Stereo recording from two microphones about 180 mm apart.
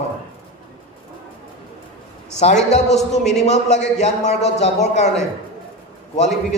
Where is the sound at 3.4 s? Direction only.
40° left (ahead or behind).